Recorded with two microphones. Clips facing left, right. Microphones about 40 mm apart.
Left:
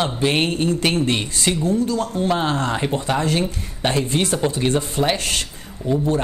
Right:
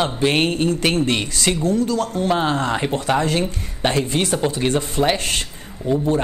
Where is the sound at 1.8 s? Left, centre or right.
Right.